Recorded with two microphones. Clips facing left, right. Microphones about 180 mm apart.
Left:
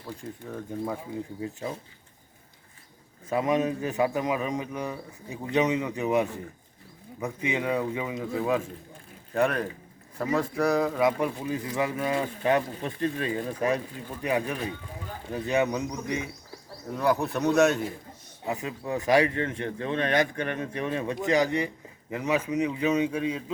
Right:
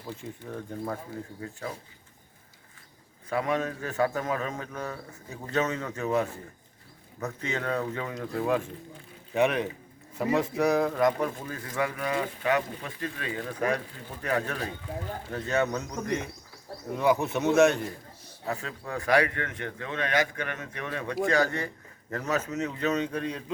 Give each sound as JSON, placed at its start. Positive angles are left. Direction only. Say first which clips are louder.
{"t": 0.2, "sound": "a man's voice", "louder": "left 1 dB", "side_deg": 0}
{"t": 3.2, "sound": "a man's voice", "louder": "left 3 dB", "side_deg": 20}
{"t": 18.4, "sound": "a man's voice", "louder": "left 3 dB", "side_deg": 20}